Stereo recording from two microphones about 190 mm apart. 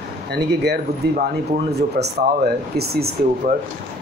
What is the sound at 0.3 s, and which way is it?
Speech, 60° right (ahead or behind).